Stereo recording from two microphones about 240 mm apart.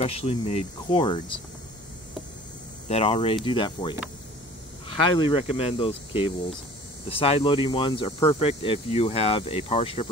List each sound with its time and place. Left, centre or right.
0.0 s speech: left
2.9 s speech: left